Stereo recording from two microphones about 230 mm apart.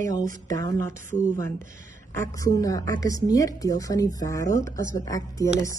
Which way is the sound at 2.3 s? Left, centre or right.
Centre.